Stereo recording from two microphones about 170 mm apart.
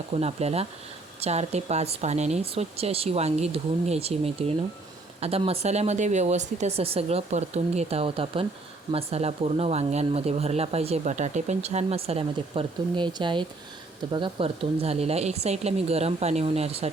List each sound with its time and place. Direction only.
0.1 s speech: 40° right (ahead or behind)